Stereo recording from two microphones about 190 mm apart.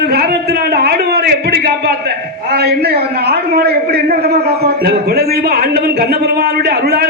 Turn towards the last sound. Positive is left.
turn(degrees=-55)  # may be behind; listen again after turning